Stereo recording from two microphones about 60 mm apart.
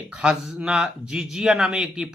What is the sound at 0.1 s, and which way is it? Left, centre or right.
Speech, centre.